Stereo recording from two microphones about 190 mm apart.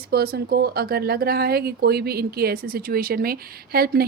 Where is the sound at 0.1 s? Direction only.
55° right (ahead or behind).